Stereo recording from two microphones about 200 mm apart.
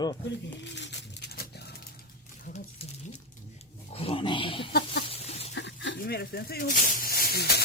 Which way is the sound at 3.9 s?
30° left (ahead or behind).